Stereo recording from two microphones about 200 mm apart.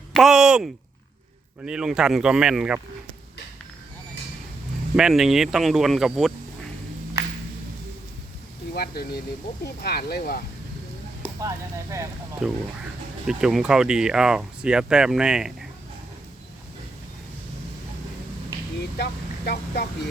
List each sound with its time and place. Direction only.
0.1 s speech: centre (ahead or behind)
4.9 s speech: 5° right (ahead or behind)
8.7 s speech: 50° left (ahead or behind)
11.3 s a sound: 15° right (ahead or behind)
12.4 s speech: 5° right (ahead or behind)
19.5 s speech: 55° left (ahead or behind)